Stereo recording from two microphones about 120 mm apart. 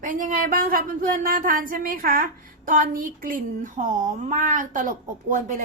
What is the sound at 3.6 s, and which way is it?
A woman's voice, 90° right.